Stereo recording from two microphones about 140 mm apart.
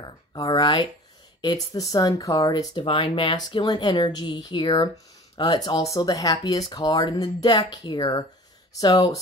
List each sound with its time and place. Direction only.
0.0 s speech: 30° left (ahead or behind)